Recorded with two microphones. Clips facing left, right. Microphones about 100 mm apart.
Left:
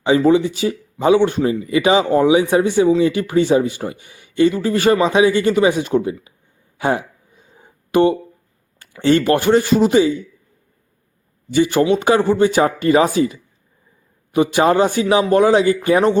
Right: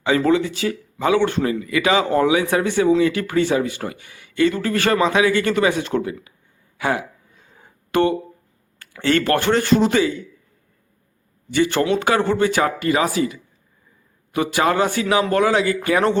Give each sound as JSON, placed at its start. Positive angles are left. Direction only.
{"t": 0.3, "sound": "speech", "side_deg": 20}
{"t": 6.7, "sound": "a sound", "side_deg": 25}
{"t": 8.8, "sound": "speech", "side_deg": 15}
{"t": 11.5, "sound": "speech", "side_deg": 15}